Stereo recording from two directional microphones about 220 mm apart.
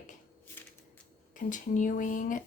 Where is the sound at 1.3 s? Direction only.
35° left (ahead or behind).